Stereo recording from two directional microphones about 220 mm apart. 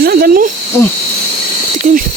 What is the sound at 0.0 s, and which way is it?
Snake, 40° right (ahead or behind).